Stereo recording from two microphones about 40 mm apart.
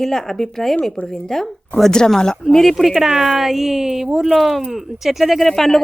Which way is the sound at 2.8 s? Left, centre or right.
Centre.